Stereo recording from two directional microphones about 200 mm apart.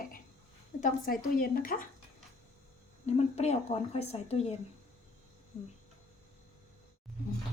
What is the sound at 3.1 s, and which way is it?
A woman's voice, 30° left (ahead or behind).